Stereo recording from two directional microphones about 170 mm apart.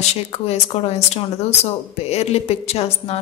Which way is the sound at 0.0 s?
40° left (ahead or behind).